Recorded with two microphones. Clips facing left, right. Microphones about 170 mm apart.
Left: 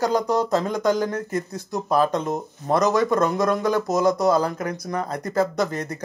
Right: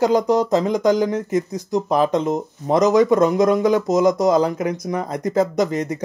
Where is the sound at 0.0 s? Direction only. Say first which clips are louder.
Right 5 dB; 20° right (ahead or behind).